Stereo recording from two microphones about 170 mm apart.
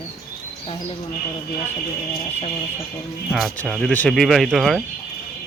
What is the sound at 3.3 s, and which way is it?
Speech, centre (ahead or behind).